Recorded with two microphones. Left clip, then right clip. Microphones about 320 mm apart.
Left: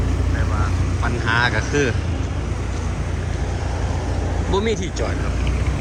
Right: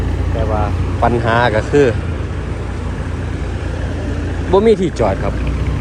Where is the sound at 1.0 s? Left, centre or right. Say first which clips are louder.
Right 6 dB; centre.